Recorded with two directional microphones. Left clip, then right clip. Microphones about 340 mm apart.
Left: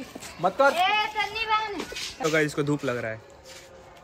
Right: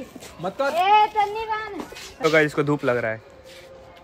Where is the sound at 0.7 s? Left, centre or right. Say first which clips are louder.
Right 7 dB; right.